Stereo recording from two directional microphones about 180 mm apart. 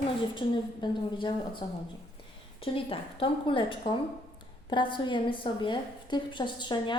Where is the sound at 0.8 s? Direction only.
25° left (ahead or behind).